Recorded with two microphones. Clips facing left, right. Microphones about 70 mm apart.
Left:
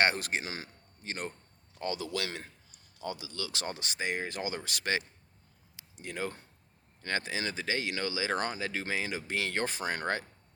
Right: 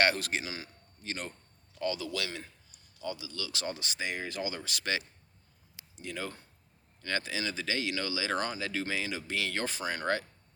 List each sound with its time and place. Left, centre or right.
0.0 s speech: left
1.0 s speech: left